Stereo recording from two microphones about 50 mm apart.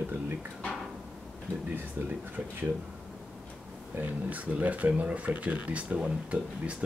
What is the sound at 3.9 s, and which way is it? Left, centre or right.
Speech, right.